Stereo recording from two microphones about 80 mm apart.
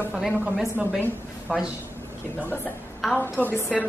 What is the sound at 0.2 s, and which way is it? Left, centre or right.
Speech, centre.